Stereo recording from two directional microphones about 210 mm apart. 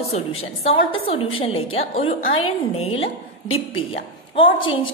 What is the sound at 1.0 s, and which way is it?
A woman's voice, 25° left (ahead or behind).